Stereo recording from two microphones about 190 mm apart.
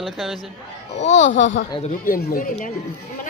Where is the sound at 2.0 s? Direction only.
45° left (ahead or behind).